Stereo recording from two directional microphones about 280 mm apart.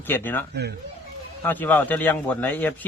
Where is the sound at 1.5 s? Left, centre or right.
Centre.